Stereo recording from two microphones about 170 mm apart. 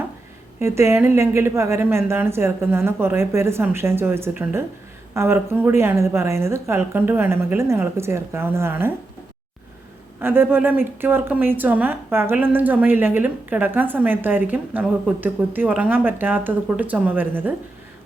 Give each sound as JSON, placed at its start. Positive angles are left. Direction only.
{"t": 0.6, "sound": "speech", "side_deg": -15}
{"t": 10.2, "sound": "speech", "side_deg": -15}